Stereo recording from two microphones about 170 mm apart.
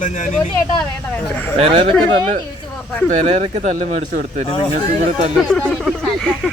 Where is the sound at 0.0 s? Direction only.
45° left (ahead or behind).